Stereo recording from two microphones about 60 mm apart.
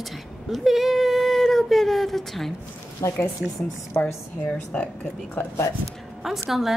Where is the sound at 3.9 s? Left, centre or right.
Left.